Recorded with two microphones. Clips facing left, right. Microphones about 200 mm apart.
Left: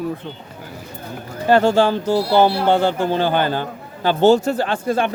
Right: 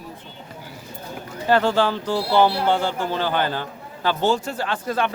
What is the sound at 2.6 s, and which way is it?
Speech, 60° left (ahead or behind).